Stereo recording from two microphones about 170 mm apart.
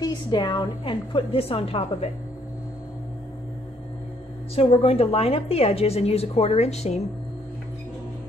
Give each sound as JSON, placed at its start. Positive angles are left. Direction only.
{"t": 0.0, "sound": "a woman's voice", "side_deg": 25}
{"t": 4.6, "sound": "a woman's voice", "side_deg": 35}